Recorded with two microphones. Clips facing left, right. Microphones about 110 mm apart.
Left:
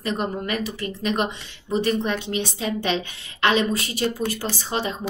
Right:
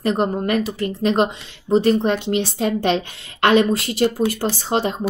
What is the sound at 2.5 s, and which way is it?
A woman's voice, 55° right (ahead or behind).